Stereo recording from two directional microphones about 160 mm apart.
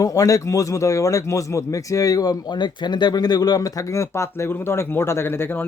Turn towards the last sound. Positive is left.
turn(degrees=15)  # may be behind; listen again after turning